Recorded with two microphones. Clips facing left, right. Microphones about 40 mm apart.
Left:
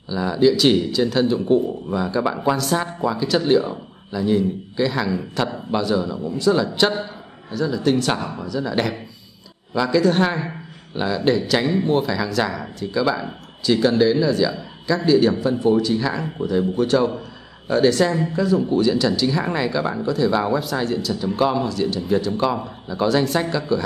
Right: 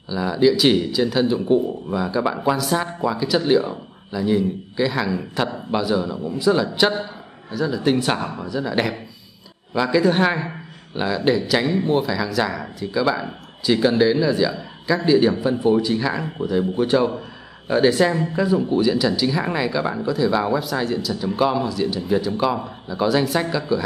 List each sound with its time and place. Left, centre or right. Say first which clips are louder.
0.1 s speech: even; centre